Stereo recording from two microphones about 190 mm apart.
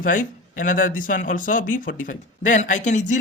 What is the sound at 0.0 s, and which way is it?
A woman's voice, 45° left (ahead or behind).